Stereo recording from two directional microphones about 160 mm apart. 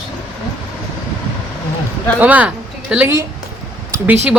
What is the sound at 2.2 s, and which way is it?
Speech, 10° right (ahead or behind).